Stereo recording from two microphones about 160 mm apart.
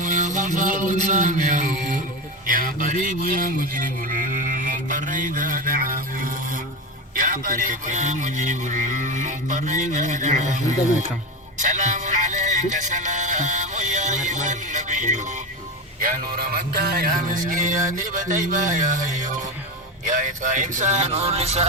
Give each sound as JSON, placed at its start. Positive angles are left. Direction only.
{"t": 0.0, "sound": "music", "side_deg": -55}
{"t": 2.5, "sound": "speech", "side_deg": -60}
{"t": 11.6, "sound": "music", "side_deg": -50}
{"t": 18.0, "sound": "speech", "side_deg": -55}